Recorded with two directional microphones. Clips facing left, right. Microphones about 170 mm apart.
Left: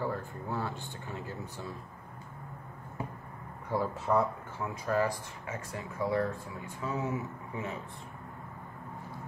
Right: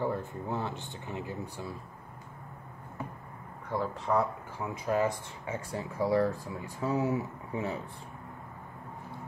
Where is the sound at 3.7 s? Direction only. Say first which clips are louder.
Left 1 dB; 5° left (ahead or behind).